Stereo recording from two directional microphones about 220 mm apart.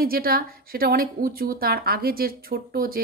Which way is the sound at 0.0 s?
40° right (ahead or behind).